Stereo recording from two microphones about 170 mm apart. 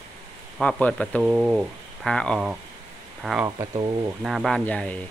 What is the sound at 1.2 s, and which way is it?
Speech, 5° right (ahead or behind).